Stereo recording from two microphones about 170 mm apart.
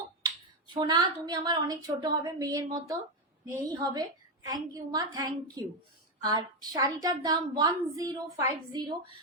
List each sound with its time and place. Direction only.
0.7 s a woman's voice: 25° right (ahead or behind)